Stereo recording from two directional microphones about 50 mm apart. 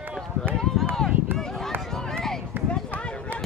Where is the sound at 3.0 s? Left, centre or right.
Left.